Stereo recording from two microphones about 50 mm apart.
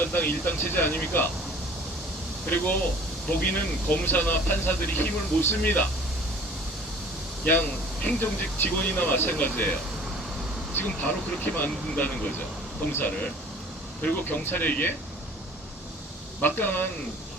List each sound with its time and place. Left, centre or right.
0.0 s speech: left
3.2 s speech: left
7.4 s speech: left
11.0 s speech: left
16.4 s speech: left